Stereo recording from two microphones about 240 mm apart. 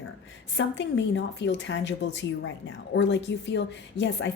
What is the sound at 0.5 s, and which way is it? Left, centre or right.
Speech, left.